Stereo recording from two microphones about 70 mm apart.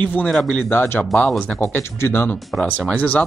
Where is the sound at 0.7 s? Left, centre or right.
Left.